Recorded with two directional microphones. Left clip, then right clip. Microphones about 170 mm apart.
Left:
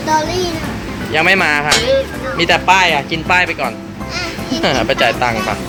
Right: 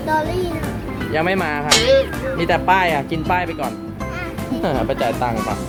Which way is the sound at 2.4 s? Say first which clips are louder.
Left 5 dB; 20° right (ahead or behind).